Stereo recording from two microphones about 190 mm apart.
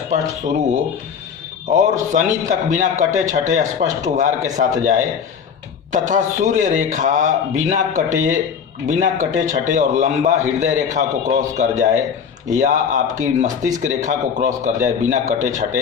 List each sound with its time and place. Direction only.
0.1 s a man's voice: 40° right (ahead or behind)
5.9 s a man's voice: 40° right (ahead or behind)